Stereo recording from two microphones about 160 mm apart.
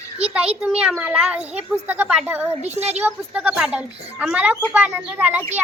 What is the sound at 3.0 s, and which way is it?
Speech, 10° right (ahead or behind).